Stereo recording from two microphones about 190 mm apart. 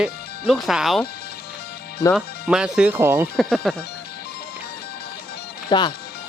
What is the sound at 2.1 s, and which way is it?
Speech, 5° right (ahead or behind).